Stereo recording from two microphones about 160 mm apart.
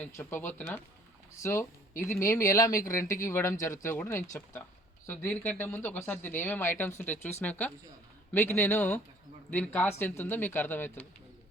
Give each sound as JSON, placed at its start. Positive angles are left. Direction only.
{"t": 0.0, "sound": "speech", "side_deg": 10}